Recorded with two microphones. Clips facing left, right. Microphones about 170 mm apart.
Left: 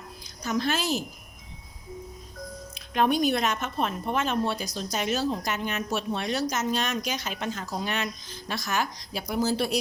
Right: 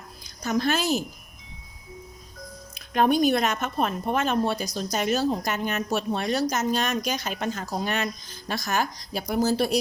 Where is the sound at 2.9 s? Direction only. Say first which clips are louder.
Right 3 dB; 45° right (ahead or behind).